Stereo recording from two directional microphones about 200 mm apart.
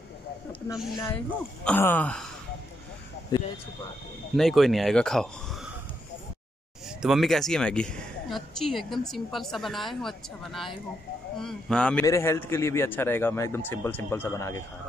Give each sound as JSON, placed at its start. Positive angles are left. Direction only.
{"t": 1.1, "sound": "a man's voice", "side_deg": 5}
{"t": 3.3, "sound": "speech", "side_deg": 20}
{"t": 4.4, "sound": "a woman's voice", "side_deg": 0}
{"t": 7.0, "sound": "a woman's voice", "side_deg": 0}